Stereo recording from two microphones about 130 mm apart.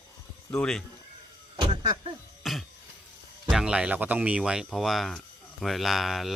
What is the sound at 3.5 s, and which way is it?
Speech, 5° right (ahead or behind).